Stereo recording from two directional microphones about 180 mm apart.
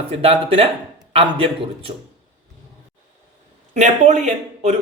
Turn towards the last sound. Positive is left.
turn(degrees=-40)  # may be behind; listen again after turning